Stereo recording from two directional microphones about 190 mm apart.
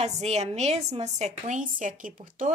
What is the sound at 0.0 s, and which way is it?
A woman's voice, 35° right (ahead or behind).